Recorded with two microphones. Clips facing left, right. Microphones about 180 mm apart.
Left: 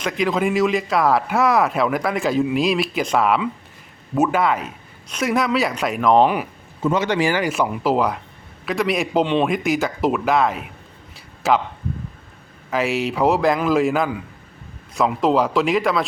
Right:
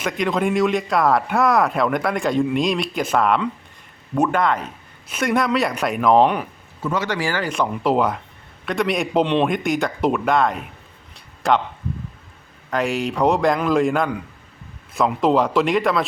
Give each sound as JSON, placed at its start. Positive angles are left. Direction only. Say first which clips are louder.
{"t": 0.0, "sound": "a man's voice", "louder": "left 1 dB", "side_deg": 0}
{"t": 6.8, "sound": "speech", "louder": "left 4 dB", "side_deg": 20}
{"t": 7.5, "sound": "a man's voice", "louder": "even", "side_deg": 5}
{"t": 12.7, "sound": "a man's voice", "louder": "left 1 dB", "side_deg": 5}